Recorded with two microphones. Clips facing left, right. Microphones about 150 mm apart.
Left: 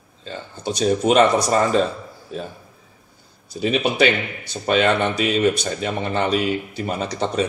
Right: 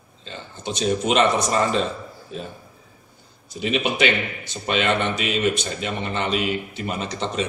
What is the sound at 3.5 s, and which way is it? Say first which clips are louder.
Speech: left 3 dB; 40° left (ahead or behind).